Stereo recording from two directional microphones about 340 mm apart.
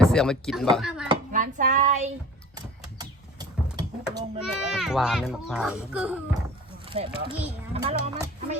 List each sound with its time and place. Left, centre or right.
0.0 s speech: centre
1.0 s speech: right; by 6.1 s centre
6.8 s a sound: centre
7.7 s speech: centre